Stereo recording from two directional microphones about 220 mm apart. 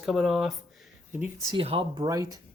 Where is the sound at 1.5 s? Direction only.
25° right (ahead or behind).